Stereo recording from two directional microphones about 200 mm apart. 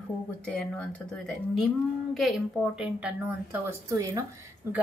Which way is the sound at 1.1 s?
Centre (ahead or behind).